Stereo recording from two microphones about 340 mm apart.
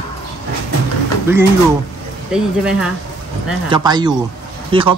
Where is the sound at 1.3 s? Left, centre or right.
Centre.